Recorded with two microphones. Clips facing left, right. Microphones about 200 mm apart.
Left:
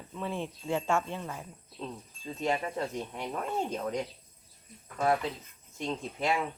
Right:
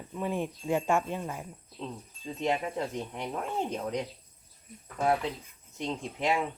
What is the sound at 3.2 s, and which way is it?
Speech, 5° right (ahead or behind).